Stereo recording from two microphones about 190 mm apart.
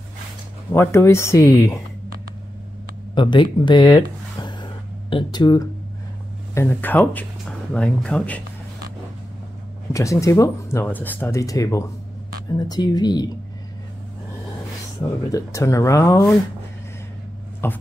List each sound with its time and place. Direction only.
0.7 s speech: 15° left (ahead or behind)
3.2 s speech: 25° left (ahead or behind); by 8.4 s 5° left (ahead or behind)
9.9 s speech: 15° left (ahead or behind)
15.3 s speech: 15° left (ahead or behind)
17.6 s speech: 10° left (ahead or behind)